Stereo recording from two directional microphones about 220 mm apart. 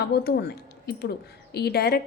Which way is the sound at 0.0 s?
45° left (ahead or behind).